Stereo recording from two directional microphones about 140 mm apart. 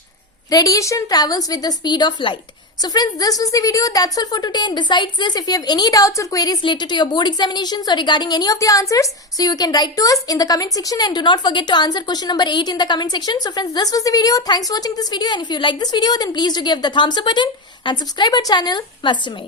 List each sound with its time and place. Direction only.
0.5 s speech: 25° left (ahead or behind)